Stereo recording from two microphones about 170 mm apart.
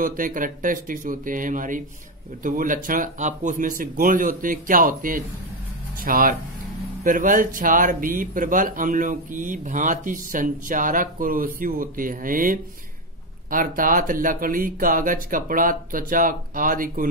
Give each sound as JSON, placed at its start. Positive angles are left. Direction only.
{"t": 0.0, "sound": "speech", "side_deg": -55}